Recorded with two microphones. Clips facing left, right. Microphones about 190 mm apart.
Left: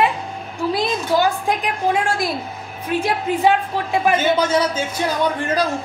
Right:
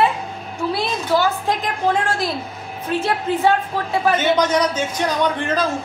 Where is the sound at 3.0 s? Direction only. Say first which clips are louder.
Left 1 dB; 15° left (ahead or behind).